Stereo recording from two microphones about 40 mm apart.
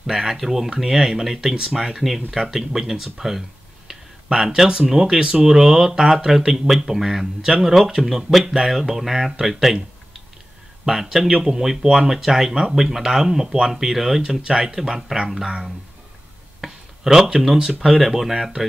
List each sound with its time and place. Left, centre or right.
0.0 s speech: centre
10.9 s speech: centre
16.6 s speech: centre